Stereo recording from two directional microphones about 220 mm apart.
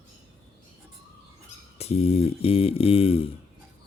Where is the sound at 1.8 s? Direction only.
30° left (ahead or behind).